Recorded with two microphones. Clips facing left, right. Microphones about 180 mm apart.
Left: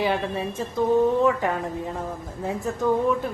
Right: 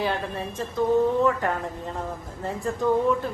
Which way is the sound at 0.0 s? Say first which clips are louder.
Left 3 dB; 10° left (ahead or behind).